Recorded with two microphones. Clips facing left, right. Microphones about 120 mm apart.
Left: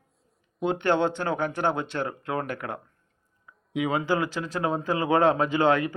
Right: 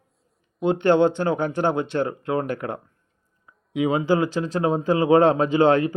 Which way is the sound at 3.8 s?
20° right (ahead or behind).